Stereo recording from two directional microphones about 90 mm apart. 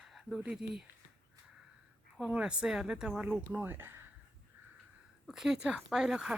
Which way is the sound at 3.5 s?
25° right (ahead or behind).